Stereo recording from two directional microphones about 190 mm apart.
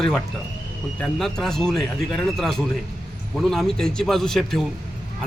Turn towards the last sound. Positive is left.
turn(degrees=0)  # may be behind; listen again after turning